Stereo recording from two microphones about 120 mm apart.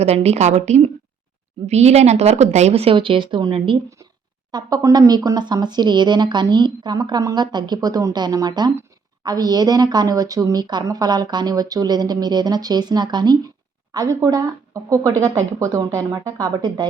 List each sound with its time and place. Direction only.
0.0 s speech: 60° right (ahead or behind); by 3.8 s 45° right (ahead or behind)
4.5 s a woman's voice: 30° right (ahead or behind)